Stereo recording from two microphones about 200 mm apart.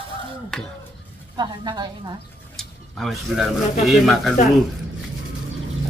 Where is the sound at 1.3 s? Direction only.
20° right (ahead or behind).